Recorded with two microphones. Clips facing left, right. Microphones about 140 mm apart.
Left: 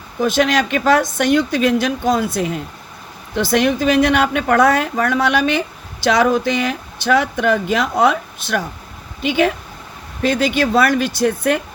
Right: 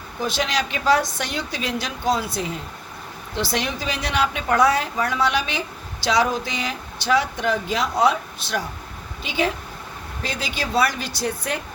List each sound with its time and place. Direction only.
0.2 s a woman's voice: 55° left (ahead or behind)